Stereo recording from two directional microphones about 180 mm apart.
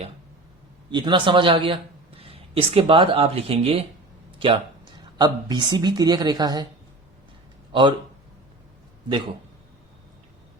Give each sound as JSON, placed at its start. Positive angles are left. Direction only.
{"t": 0.9, "sound": "a man's voice", "side_deg": -25}
{"t": 7.7, "sound": "speech", "side_deg": -25}
{"t": 9.0, "sound": "a man's voice", "side_deg": -25}